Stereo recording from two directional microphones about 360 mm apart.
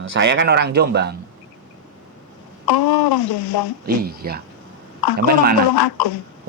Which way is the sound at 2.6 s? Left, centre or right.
Left.